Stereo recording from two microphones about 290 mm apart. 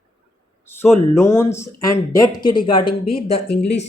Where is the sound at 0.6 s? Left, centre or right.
Centre.